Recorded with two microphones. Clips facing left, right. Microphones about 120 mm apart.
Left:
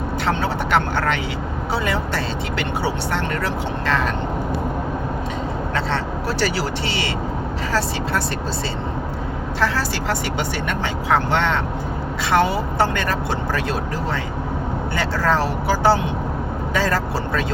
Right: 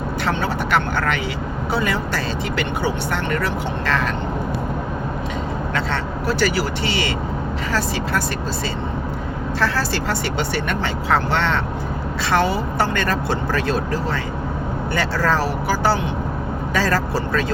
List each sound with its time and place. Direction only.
0.3 s speech: 25° left (ahead or behind)
6.2 s speech: 30° left (ahead or behind)
9.6 s speech: 15° left (ahead or behind)